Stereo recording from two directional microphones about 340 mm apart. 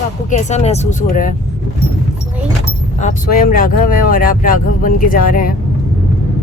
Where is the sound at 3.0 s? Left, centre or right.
Left.